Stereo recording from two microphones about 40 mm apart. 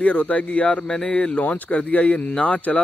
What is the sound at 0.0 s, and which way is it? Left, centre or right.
Speech, left.